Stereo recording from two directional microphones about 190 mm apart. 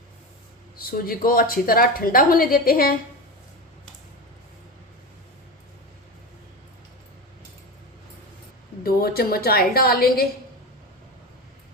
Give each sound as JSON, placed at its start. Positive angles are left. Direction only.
{"t": 0.8, "sound": "a woman's voice", "side_deg": 50}
{"t": 8.8, "sound": "a woman's voice", "side_deg": 55}